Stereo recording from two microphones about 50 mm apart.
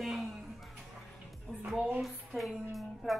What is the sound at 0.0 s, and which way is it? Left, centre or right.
Music, centre.